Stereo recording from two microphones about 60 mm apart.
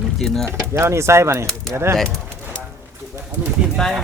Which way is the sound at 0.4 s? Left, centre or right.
Right.